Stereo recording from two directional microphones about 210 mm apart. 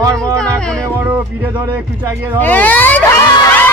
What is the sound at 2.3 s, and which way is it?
Speech, 10° left (ahead or behind).